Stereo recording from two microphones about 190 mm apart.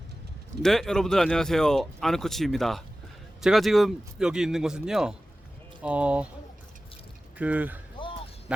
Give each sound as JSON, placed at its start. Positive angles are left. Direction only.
{"t": 0.6, "sound": "speech", "side_deg": 0}
{"t": 7.3, "sound": "speech", "side_deg": -10}
{"t": 8.0, "sound": "a sound", "side_deg": 25}
{"t": 8.5, "sound": "speech", "side_deg": -5}